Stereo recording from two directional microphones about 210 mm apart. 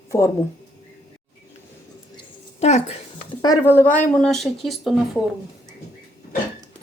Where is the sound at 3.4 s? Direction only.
15° left (ahead or behind).